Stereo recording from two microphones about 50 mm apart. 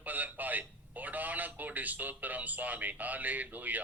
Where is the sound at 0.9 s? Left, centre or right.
Right.